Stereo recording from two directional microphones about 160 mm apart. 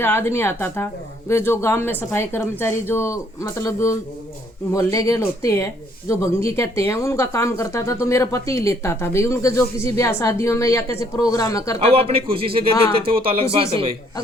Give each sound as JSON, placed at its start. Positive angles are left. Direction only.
{"t": 0.0, "sound": "speech", "side_deg": 15}
{"t": 11.8, "sound": "speech", "side_deg": -35}